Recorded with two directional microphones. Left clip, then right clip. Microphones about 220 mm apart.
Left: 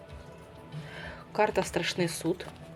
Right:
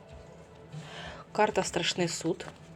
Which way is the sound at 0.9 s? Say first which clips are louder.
Even; 20° right (ahead or behind).